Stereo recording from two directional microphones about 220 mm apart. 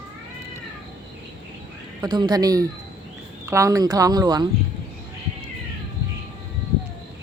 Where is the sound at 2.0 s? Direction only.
20° right (ahead or behind).